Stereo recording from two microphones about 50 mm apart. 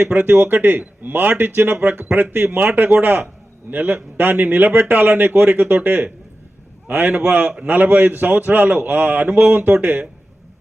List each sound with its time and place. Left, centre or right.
0.1 s a man's voice: right
7.1 s a man's voice: right
7.8 s speech: right
9.7 s a man's voice: right